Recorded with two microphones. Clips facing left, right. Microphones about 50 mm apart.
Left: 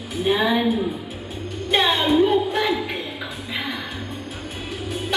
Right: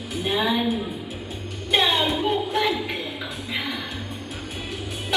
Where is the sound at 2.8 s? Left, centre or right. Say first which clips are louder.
Left 2 dB; centre.